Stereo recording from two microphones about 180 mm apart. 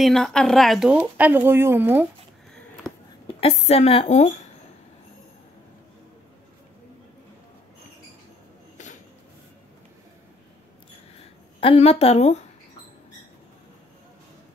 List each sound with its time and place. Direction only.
0.0 s speech: 5° left (ahead or behind)
2.9 s a sound: 5° left (ahead or behind)
3.3 s a woman's voice: 35° left (ahead or behind)
8.8 s train: 45° left (ahead or behind)
11.1 s speech: 35° left (ahead or behind)